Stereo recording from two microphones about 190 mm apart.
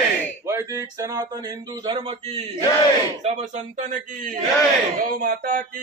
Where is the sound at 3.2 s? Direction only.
40° right (ahead or behind).